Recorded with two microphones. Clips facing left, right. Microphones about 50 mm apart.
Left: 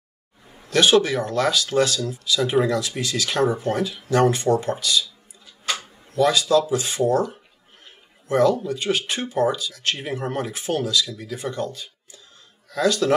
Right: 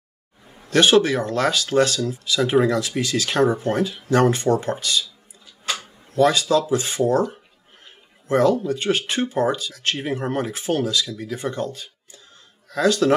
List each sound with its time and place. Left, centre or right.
0.7 s speech: right
6.1 s speech: right